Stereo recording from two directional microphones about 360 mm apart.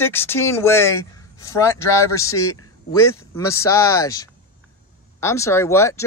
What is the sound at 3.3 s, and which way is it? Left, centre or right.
Speech, centre.